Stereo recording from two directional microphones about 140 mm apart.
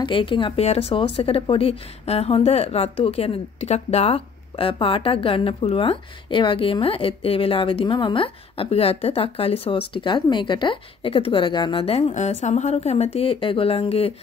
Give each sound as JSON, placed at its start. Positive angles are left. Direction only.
{"t": 0.0, "sound": "a woman's voice", "side_deg": 35}
{"t": 12.1, "sound": "a woman's voice", "side_deg": 55}